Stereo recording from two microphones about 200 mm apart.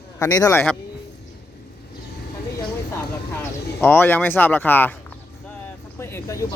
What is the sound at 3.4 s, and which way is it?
Speech, 10° left (ahead or behind).